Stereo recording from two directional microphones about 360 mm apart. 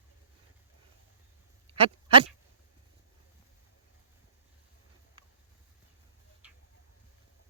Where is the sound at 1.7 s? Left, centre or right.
Centre.